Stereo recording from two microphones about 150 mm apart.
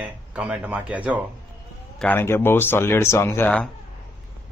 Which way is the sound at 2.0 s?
15° left (ahead or behind).